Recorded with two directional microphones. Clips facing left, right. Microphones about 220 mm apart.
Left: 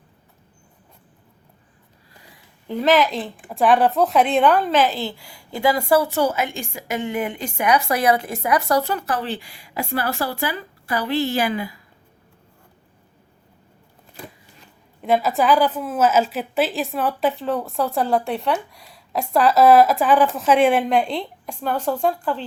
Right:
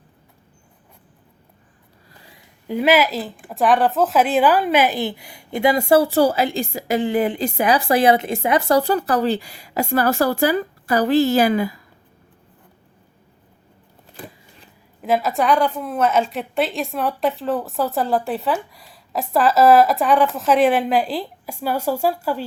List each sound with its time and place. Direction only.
2.6 s a woman's voice: 10° right (ahead or behind); by 11.7 s 40° right (ahead or behind)
15.0 s a woman's voice: centre (ahead or behind)